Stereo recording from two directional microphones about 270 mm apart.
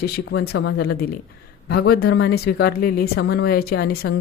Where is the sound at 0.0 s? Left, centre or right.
Left.